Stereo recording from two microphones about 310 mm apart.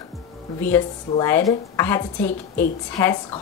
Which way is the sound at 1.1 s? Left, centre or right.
Centre.